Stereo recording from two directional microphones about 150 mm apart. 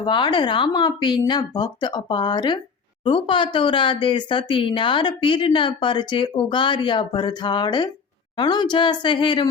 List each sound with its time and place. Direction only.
0.0 s speech: 30° left (ahead or behind)